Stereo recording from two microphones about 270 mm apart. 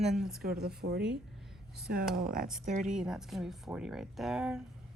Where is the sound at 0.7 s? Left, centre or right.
Right.